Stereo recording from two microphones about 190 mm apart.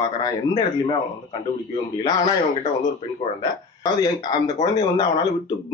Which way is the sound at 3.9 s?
20° left (ahead or behind).